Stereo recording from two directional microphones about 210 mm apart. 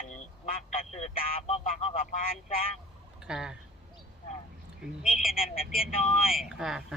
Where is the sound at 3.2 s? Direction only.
5° right (ahead or behind).